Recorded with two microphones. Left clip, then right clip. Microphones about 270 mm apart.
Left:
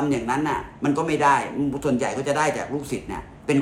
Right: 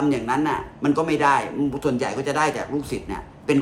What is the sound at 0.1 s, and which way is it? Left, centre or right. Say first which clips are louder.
Speech: right 1 dB; centre.